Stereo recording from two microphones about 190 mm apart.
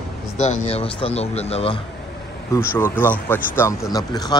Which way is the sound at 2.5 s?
10° left (ahead or behind).